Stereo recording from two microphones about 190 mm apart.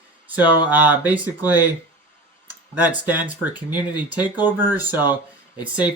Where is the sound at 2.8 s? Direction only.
10° right (ahead or behind).